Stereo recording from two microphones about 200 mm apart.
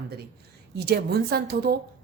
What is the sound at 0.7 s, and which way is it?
A woman's voice, 55° right (ahead or behind).